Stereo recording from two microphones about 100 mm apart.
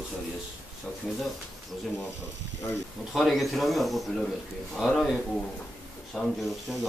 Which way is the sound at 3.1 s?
Centre (ahead or behind).